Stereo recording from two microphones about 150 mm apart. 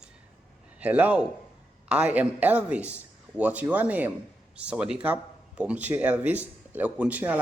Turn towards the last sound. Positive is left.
turn(degrees=-10)  # may be behind; listen again after turning